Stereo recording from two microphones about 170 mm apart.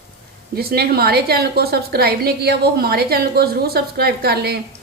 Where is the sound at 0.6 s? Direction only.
65° right (ahead or behind).